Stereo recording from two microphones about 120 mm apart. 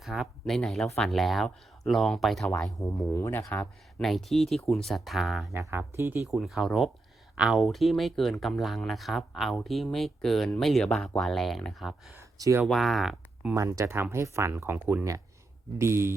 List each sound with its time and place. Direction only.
0.0 s speech: 5° right (ahead or behind)
2.8 s speech: 25° left (ahead or behind)
4.0 s speech: centre (ahead or behind)
5.5 s speech: 20° right (ahead or behind)
6.3 s speech: centre (ahead or behind)
12.1 s a sound: 25° right (ahead or behind)
12.6 s speech: centre (ahead or behind)
13.5 s speech: 25° right (ahead or behind)